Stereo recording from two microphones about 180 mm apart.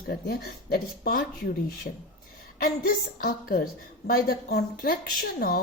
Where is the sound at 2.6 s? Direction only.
55° left (ahead or behind).